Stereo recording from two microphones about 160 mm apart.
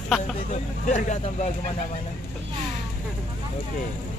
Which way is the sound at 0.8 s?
45° left (ahead or behind).